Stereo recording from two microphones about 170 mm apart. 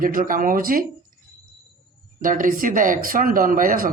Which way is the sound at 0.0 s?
55° right (ahead or behind).